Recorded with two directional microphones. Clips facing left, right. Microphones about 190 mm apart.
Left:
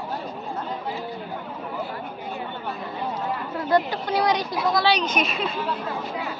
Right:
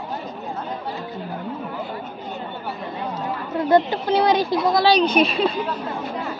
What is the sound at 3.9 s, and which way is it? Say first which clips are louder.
Speech: right 4 dB; 25° right (ahead or behind).